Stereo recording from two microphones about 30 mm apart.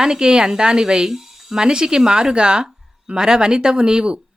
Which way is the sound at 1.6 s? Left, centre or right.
Right.